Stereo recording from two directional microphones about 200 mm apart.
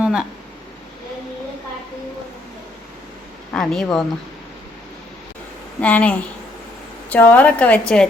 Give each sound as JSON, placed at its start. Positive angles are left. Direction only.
{"t": 0.0, "sound": "a sound", "side_deg": -5}
{"t": 3.5, "sound": "speech", "side_deg": 5}
{"t": 5.8, "sound": "a woman's voice", "side_deg": 5}